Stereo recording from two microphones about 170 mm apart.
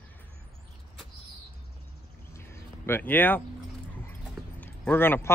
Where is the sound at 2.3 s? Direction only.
15° left (ahead or behind).